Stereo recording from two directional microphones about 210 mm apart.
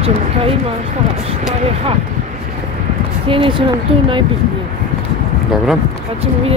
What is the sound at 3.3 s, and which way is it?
Speech, 25° right (ahead or behind).